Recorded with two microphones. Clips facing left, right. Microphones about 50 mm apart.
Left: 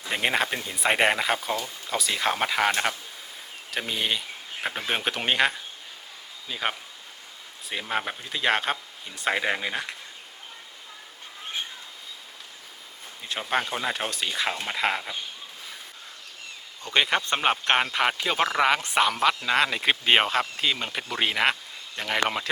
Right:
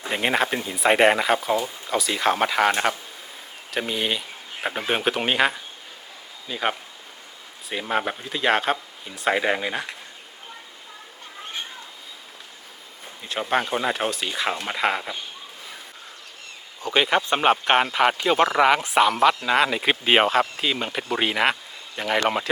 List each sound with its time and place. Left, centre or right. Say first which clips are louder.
0.1 s speech: right 3 dB; centre
13.5 s speech: right 4 dB; centre
16.8 s speech: right 3 dB; centre